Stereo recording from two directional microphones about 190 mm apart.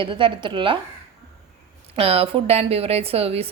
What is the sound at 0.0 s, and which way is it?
Speech, 25° right (ahead or behind).